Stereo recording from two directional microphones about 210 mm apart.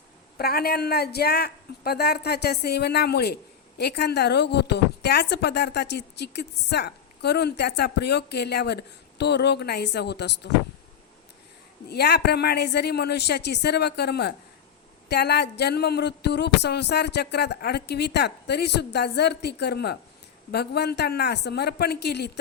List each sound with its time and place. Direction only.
0.3 s a woman's voice: 50° left (ahead or behind)
11.9 s a woman's voice: 50° left (ahead or behind)